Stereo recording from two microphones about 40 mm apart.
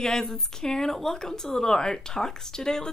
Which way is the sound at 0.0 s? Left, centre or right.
Centre.